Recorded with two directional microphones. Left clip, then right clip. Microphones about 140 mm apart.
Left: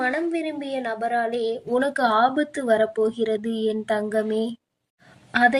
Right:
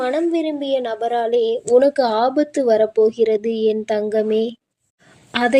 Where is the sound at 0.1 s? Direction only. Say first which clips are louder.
Right 6 dB; 30° right (ahead or behind).